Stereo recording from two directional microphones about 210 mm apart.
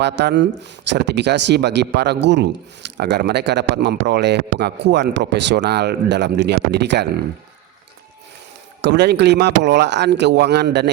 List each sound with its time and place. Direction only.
0.0 s speech: 55° right (ahead or behind)
8.8 s speech: 55° right (ahead or behind)